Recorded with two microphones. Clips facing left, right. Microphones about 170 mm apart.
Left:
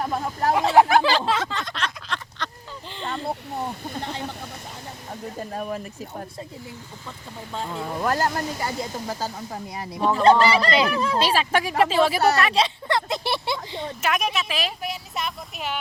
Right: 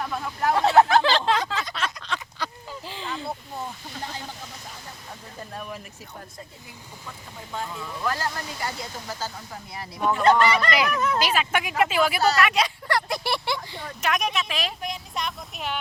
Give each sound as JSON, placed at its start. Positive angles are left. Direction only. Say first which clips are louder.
{"t": 0.0, "sound": "speech", "louder": "left 2 dB", "side_deg": 40}
{"t": 0.8, "sound": "a sound", "louder": "left 2 dB", "side_deg": 10}
{"t": 3.7, "sound": "speech", "louder": "left 7 dB", "side_deg": 50}
{"t": 5.5, "sound": "speech", "louder": "left 6 dB", "side_deg": 40}
{"t": 7.8, "sound": "speech", "louder": "left 7 dB", "side_deg": 45}
{"t": 8.6, "sound": "speech", "louder": "left 4 dB", "side_deg": 30}
{"t": 12.4, "sound": "a sound", "louder": "left 1 dB", "side_deg": 30}
{"t": 14.0, "sound": "speech", "louder": "even", "side_deg": 5}